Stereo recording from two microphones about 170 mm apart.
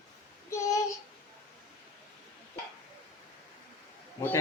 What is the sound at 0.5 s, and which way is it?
Child singing, 20° left (ahead or behind).